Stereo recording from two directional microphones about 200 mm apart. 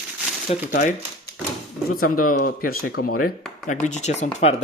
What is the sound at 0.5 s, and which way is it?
Speech, 35° left (ahead or behind).